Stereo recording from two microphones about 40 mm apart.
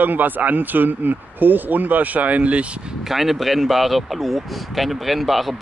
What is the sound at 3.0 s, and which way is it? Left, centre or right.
Speech, centre.